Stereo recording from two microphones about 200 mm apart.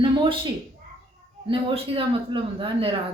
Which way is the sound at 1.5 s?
25° right (ahead or behind).